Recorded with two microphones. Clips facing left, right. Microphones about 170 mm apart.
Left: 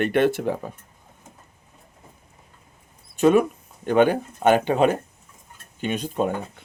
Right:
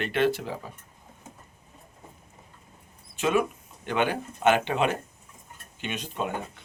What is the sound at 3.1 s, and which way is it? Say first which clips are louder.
Speech: left 8 dB; 40° left (ahead or behind).